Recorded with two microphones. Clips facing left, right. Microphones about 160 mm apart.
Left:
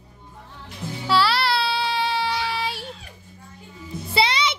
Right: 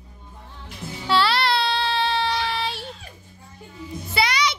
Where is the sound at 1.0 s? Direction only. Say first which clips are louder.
Even; 5° left (ahead or behind).